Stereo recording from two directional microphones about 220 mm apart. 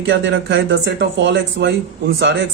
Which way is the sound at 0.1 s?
55° right (ahead or behind).